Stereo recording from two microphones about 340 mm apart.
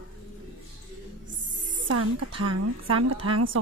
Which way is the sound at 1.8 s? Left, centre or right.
Right.